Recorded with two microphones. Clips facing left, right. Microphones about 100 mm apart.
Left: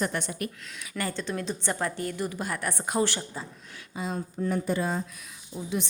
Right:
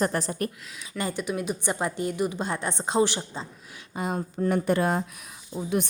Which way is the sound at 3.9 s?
55° right (ahead or behind).